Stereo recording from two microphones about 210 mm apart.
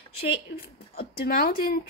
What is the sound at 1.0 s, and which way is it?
Speech, 45° left (ahead or behind).